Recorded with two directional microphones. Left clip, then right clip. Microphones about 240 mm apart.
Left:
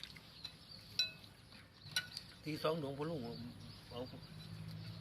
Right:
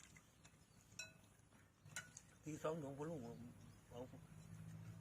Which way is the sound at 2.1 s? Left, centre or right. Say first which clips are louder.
Left 10 dB; centre.